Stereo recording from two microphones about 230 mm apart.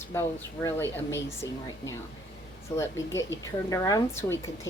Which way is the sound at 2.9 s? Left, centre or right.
Left.